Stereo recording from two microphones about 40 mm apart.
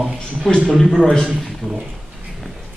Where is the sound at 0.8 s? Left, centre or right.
Centre.